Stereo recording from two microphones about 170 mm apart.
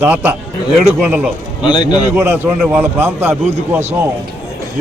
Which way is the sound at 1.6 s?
25° left (ahead or behind).